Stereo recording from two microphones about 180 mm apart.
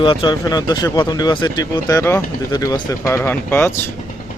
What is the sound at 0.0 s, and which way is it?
A man's voice, 25° left (ahead or behind).